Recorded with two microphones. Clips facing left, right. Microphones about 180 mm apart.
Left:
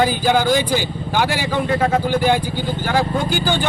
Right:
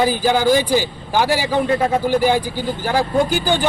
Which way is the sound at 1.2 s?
35° right (ahead or behind).